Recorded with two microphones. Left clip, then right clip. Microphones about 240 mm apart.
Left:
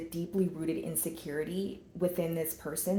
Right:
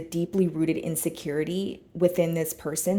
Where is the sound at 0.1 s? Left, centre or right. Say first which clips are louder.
Right 9 dB; right.